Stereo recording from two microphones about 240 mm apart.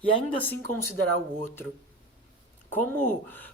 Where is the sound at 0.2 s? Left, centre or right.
Centre.